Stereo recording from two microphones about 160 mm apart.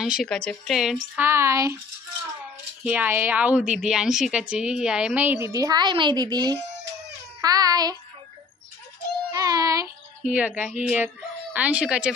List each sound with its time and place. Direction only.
0.0 s a woman's voice: centre (ahead or behind)
1.1 s a woman's voice: 15° right (ahead or behind)
2.8 s a woman's voice: 10° right (ahead or behind); by 6.6 s 25° right (ahead or behind)
7.4 s child singing: 25° right (ahead or behind)
9.3 s music: 20° right (ahead or behind)
10.2 s a woman's voice: 10° right (ahead or behind)